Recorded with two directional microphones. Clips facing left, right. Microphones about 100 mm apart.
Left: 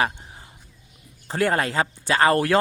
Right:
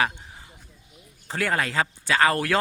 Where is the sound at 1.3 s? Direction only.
30° left (ahead or behind).